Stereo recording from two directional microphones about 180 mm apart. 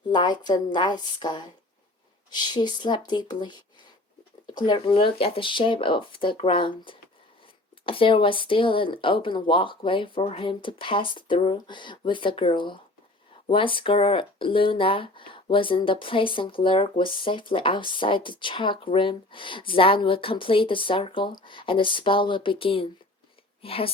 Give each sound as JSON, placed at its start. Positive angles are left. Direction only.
{"t": 0.1, "sound": "speech", "side_deg": 25}